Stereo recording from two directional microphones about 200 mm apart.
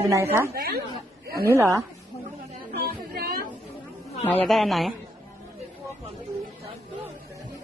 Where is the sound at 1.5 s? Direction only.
15° right (ahead or behind).